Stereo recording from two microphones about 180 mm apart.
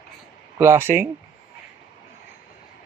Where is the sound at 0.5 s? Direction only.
15° right (ahead or behind).